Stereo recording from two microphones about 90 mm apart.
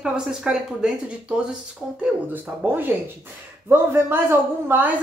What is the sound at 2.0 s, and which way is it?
A man's voice, 20° right (ahead or behind).